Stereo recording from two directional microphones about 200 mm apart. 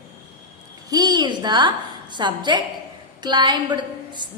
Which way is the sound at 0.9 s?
20° right (ahead or behind).